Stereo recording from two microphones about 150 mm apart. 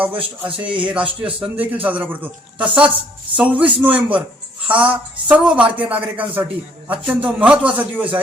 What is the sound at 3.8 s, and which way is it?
Speech, 10° right (ahead or behind).